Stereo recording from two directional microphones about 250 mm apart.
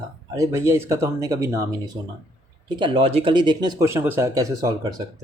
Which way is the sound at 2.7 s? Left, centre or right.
Centre.